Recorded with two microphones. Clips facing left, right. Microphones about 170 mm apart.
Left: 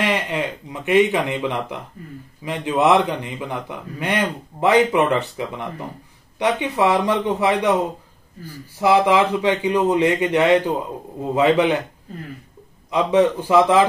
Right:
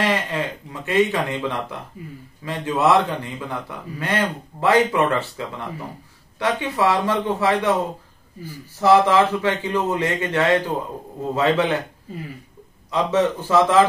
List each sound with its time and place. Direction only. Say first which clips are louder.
0.0 s a man's voice: left 1 dB; 15° left (ahead or behind)
8.7 s a man's voice: right 1 dB; 15° left (ahead or behind)
12.9 s a man's voice: left 3 dB; 15° left (ahead or behind)